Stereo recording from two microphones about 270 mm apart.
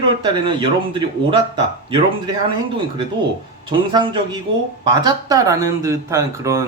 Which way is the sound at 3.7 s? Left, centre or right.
Centre.